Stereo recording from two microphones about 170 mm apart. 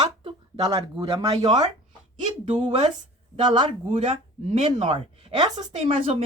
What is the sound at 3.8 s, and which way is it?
Speech, 35° right (ahead or behind).